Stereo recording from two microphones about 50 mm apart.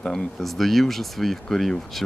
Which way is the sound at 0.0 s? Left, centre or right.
Centre.